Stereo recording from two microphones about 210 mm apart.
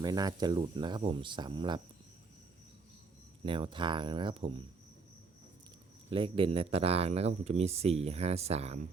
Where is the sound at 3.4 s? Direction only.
25° right (ahead or behind).